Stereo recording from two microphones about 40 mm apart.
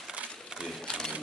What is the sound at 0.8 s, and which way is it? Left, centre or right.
Speech, centre.